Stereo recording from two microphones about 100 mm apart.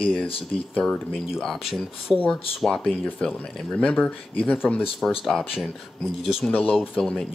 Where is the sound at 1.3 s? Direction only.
Centre (ahead or behind).